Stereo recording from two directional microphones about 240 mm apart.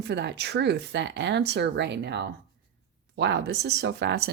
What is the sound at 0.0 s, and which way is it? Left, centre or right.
Speech, right.